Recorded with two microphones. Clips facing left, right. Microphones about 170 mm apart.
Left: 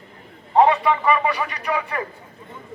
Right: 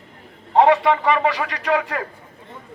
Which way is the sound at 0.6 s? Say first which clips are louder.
Right 2 dB; 90° right.